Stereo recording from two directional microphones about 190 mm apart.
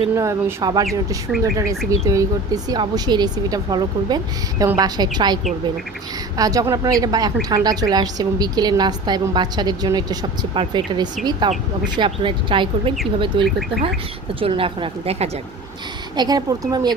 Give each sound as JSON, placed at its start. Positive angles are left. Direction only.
{"t": 0.1, "sound": "speech", "side_deg": -15}
{"t": 2.0, "sound": "a woman's voice", "side_deg": -20}
{"t": 16.2, "sound": "a woman's voice", "side_deg": -20}